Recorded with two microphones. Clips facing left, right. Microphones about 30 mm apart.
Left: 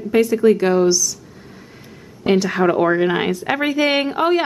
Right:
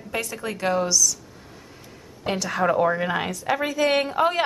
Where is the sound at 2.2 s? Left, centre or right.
Left.